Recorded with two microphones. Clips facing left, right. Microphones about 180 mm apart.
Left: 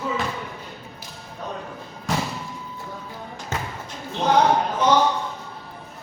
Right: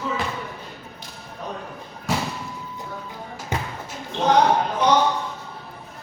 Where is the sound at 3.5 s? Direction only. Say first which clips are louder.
Right 2 dB; 15° right (ahead or behind).